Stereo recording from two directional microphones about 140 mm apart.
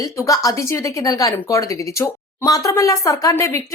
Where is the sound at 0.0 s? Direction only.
25° left (ahead or behind).